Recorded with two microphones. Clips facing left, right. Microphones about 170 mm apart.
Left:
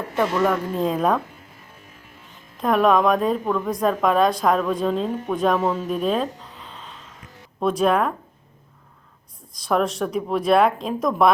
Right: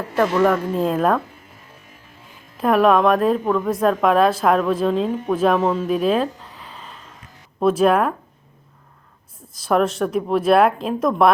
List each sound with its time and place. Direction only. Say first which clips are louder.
0.2 s a woman's voice: right 4 dB; centre (ahead or behind)
2.6 s a woman's voice: right 2 dB; 5° right (ahead or behind)
9.6 s a woman's voice: right 3 dB; centre (ahead or behind)